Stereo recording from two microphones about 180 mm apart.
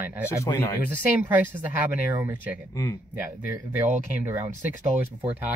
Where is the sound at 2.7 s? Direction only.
20° left (ahead or behind).